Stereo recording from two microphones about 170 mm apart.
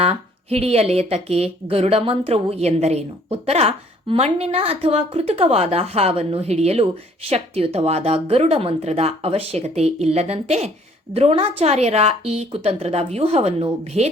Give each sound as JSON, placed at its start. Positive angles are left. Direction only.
{"t": 0.0, "sound": "a woman's voice", "side_deg": -35}